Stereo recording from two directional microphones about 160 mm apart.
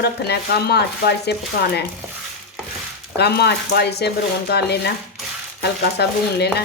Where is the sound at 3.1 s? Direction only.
90° left.